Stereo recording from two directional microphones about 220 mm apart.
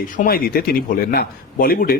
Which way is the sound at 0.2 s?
40° left (ahead or behind).